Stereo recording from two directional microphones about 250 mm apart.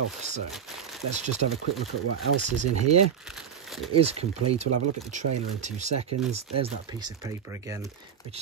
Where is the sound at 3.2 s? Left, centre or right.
Centre.